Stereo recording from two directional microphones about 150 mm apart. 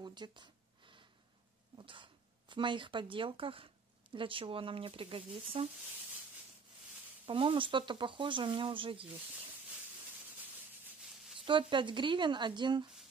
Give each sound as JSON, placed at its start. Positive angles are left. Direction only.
{"t": 0.0, "sound": "a sound", "side_deg": -30}
{"t": 1.8, "sound": "speech", "side_deg": -35}
{"t": 7.2, "sound": "speech", "side_deg": -35}
{"t": 11.4, "sound": "speech", "side_deg": -35}